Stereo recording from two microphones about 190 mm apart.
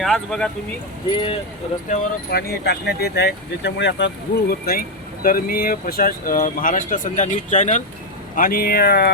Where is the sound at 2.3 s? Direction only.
55° left (ahead or behind); by 7.9 s 40° left (ahead or behind).